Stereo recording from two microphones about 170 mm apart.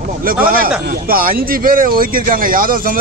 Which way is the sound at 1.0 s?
60° right (ahead or behind).